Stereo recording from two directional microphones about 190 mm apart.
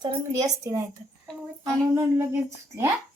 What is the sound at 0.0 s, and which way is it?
A woman's voice, 20° right (ahead or behind).